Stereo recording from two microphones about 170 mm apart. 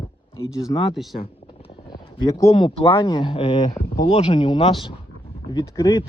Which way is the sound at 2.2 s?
20° left (ahead or behind).